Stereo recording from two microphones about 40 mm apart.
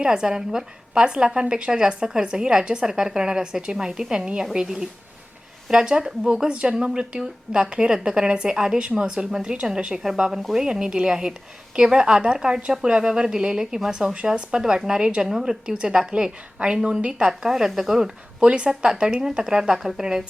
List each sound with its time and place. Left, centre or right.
0.0 s a woman's voice: centre
6.5 s a woman's voice: right
15.3 s speech: centre
15.6 s a woman's voice: right
18.4 s speech: right; by 20.1 s centre